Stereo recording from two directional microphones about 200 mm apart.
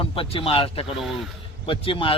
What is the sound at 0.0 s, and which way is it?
A man's voice, 25° left (ahead or behind).